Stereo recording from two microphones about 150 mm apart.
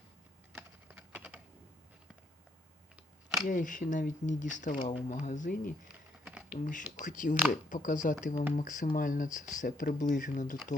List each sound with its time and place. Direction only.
0.5 s typing: 10° right (ahead or behind)
3.4 s speech: 60° left (ahead or behind)
6.2 s typing: 5° right (ahead or behind)
6.6 s speech: 60° left (ahead or behind)